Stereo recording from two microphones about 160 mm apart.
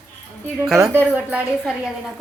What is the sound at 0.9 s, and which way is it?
Speech, 10° right (ahead or behind).